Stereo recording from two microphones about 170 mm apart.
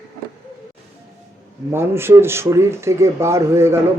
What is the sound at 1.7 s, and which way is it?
Speech, 15° right (ahead or behind).